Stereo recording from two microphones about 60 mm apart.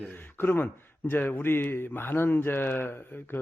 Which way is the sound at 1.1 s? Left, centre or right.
Left.